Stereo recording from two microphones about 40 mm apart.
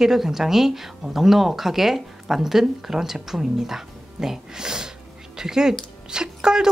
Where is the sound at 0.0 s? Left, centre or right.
Centre.